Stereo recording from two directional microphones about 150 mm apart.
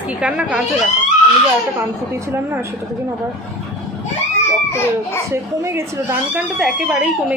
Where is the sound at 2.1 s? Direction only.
15° right (ahead or behind).